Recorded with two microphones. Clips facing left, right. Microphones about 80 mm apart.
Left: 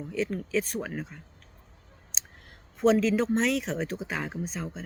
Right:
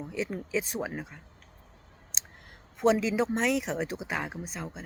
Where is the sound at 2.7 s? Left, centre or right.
Centre.